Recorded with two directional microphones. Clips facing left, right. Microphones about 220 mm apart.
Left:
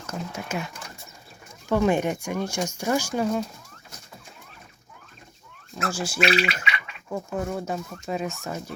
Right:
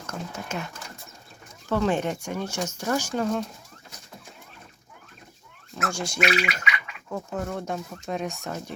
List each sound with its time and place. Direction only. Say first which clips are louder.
0.1 s speech: left 2 dB; 10° left (ahead or behind)
5.9 s speech: left 3 dB; 5° left (ahead or behind)
6.1 s speech: left 2 dB; 25° left (ahead or behind)
7.1 s speech: left 2 dB; 10° left (ahead or behind)